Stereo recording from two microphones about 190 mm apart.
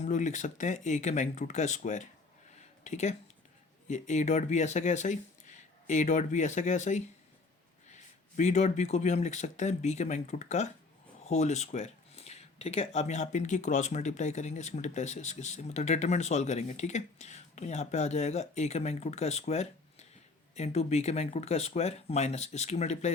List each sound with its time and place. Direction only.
0.0 s speech: 40° left (ahead or behind)